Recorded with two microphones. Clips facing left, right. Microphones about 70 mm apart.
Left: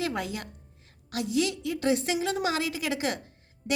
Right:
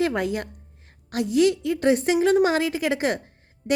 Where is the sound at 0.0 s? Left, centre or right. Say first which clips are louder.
Right 8 dB; right.